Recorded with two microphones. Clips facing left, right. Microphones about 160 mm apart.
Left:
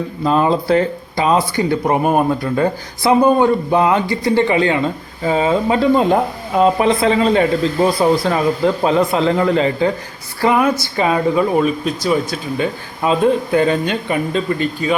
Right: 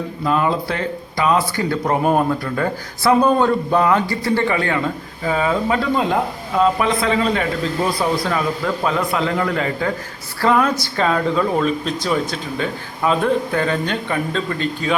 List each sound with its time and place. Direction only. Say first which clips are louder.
0.3 s speech: left 5 dB; 30° left (ahead or behind)
10.4 s speech: left 2 dB; 15° left (ahead or behind)
13.1 s speech: left 3 dB; 20° left (ahead or behind)